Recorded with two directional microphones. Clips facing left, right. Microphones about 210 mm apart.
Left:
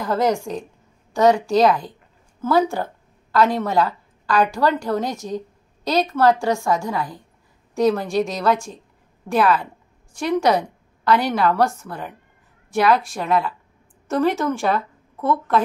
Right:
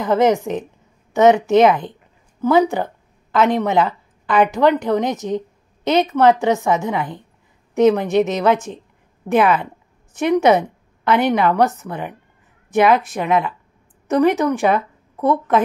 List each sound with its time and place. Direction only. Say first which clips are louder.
0.0 s a woman's voice: right 5 dB; 20° right (ahead or behind)